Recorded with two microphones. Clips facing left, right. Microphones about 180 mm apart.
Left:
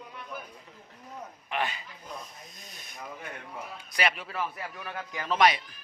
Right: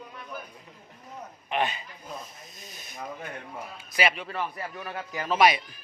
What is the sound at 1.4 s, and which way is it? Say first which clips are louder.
Speech: right 4 dB; 20° right (ahead or behind).